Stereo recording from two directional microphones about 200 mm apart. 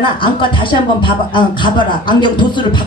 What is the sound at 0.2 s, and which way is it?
Speech, 25° left (ahead or behind).